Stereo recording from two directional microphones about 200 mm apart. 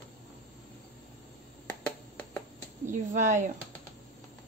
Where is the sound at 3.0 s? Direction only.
40° right (ahead or behind).